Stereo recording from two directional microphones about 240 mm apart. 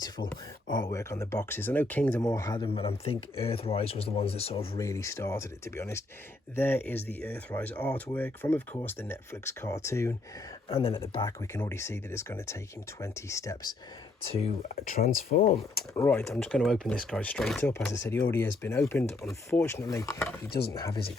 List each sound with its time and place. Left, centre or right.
0.7 s speech: centre
4.8 s speech: centre
10.7 s speech: left
14.3 s speech: left
16.0 s speech: centre
20.5 s speech: left
20.7 s speech: centre